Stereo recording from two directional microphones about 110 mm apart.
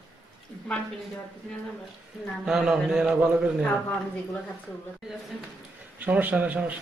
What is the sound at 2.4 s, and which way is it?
A man's voice, 5° right (ahead or behind).